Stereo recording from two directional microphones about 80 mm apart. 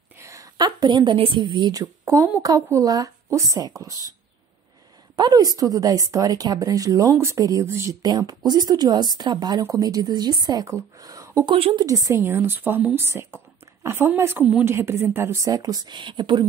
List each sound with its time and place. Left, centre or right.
0.2 s a sound: right
0.6 s a woman's voice: right
1.7 s speech: right
5.1 s speech: right
7.3 s speech: right
7.6 s a woman's voice: right
7.9 s a woman's voice: right
9.6 s speech: right
12.2 s a woman's voice: right
15.4 s speech: right
15.9 s a woman's voice: right